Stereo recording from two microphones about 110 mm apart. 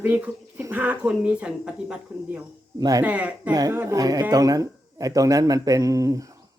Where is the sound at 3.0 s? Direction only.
15° right (ahead or behind).